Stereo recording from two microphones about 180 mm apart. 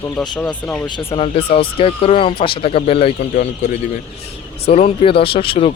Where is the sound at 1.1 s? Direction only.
35° left (ahead or behind).